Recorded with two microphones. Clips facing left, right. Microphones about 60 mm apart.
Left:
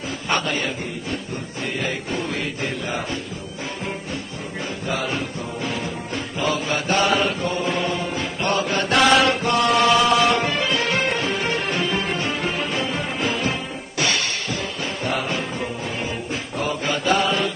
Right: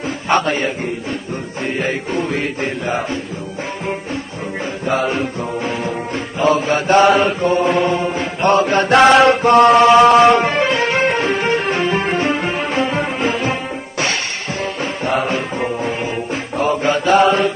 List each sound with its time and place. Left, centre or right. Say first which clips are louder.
0.3 s music: right 7 dB; right
1.8 s music: right 6 dB; right
4.8 s music: right 8 dB; right
16.5 s mantra: right 8 dB; right